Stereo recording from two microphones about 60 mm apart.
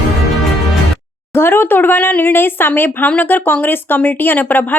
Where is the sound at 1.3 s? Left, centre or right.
Left.